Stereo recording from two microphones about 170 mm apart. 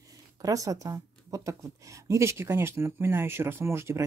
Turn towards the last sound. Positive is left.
turn(degrees=-15)  # may be behind; listen again after turning